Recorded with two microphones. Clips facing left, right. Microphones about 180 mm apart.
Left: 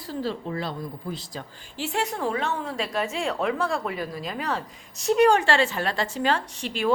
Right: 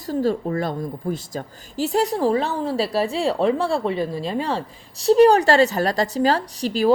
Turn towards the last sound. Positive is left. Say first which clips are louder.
# right 7 dB
turn(degrees=-35)  # may be behind; listen again after turning